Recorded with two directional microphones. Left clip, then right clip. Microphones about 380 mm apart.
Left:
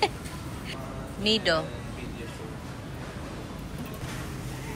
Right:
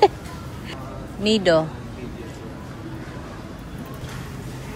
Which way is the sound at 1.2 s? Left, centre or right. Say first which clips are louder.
Right 7 dB; centre.